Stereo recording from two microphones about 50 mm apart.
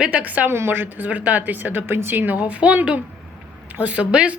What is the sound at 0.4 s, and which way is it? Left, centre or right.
A woman's voice, right.